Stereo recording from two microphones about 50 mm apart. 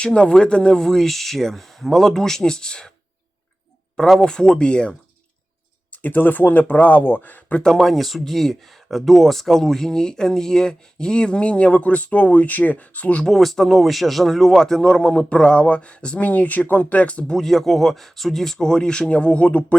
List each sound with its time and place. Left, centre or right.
0.0 s speech: centre
3.9 s speech: centre
4.2 s speech: centre
5.9 s speech: left
7.6 s speech: centre; by 13.2 s left
13.2 s a man's voice: centre; by 17.3 s left
17.3 s speech: centre; by 19.6 s left